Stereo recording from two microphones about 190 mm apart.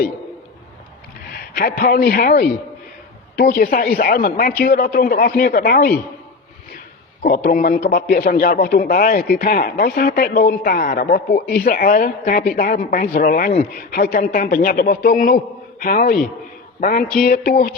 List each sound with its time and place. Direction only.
1.3 s a man's voice: 50° left (ahead or behind)
7.3 s a man's voice: 50° left (ahead or behind)